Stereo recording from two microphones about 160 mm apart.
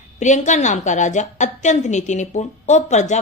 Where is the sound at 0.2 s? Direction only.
50° left (ahead or behind).